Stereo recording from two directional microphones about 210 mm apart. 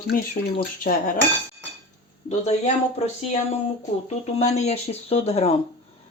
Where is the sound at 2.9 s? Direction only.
35° left (ahead or behind).